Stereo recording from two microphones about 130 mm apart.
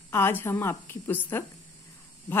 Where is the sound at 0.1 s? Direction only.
20° left (ahead or behind).